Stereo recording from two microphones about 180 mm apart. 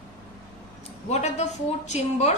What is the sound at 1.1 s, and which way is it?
A woman's voice, 40° left (ahead or behind).